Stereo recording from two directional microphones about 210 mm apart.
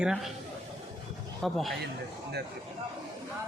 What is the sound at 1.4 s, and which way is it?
Speech, centre (ahead or behind).